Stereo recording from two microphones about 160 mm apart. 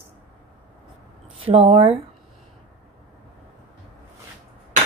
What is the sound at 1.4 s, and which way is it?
Speech, 35° right (ahead or behind).